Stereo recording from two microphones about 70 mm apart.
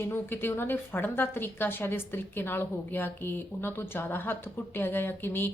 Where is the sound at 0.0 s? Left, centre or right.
Left.